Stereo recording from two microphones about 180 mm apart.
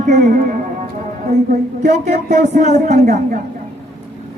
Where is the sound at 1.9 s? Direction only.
40° right (ahead or behind).